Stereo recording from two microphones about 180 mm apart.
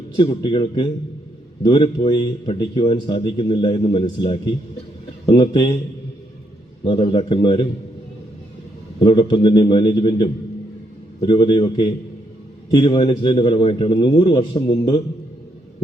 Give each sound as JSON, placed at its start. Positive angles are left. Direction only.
{"t": 0.2, "sound": "a man's voice", "side_deg": 25}
{"t": 6.8, "sound": "a man's voice", "side_deg": 30}
{"t": 9.0, "sound": "a man's voice", "side_deg": 25}